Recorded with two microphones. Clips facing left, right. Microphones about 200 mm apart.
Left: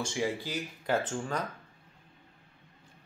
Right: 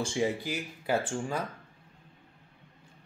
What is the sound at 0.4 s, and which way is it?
Speech, 10° right (ahead or behind).